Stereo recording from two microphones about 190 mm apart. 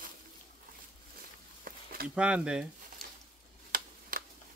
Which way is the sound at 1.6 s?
50° right (ahead or behind).